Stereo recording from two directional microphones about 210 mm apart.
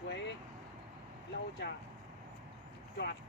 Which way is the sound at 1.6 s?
55° left (ahead or behind).